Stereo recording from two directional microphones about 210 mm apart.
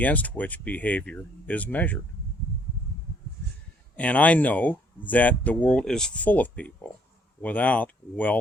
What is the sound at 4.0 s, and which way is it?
Speech, 5° left (ahead or behind).